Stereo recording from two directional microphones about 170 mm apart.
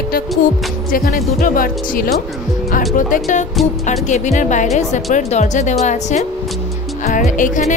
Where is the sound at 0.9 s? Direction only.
55° left (ahead or behind).